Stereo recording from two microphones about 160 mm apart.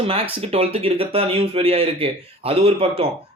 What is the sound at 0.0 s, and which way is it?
Speech, 35° right (ahead or behind).